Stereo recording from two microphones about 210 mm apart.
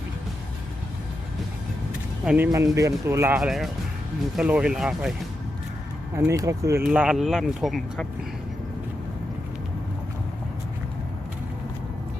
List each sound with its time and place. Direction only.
2.2 s speech: 10° right (ahead or behind)
6.1 s speech: 15° right (ahead or behind)
6.8 s speech: 5° right (ahead or behind)